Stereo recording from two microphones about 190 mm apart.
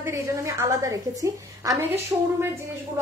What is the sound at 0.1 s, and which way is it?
A woman's voice, 15° right (ahead or behind).